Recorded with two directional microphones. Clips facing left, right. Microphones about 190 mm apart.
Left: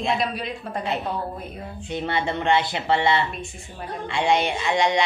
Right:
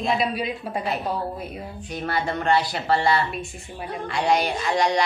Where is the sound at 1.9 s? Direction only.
25° left (ahead or behind).